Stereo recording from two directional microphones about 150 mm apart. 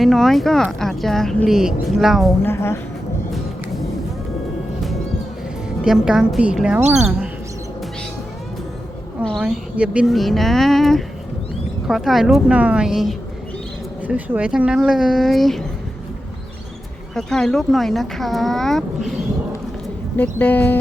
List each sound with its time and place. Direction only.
0.0 s speech: centre (ahead or behind)
2.4 s speech: 15° left (ahead or behind)
5.8 s speech: 5° right (ahead or behind)
9.2 s speech: centre (ahead or behind)
17.2 s speech: 5° left (ahead or behind)